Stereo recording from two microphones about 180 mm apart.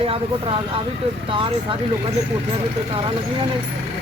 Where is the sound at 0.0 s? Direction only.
30° right (ahead or behind).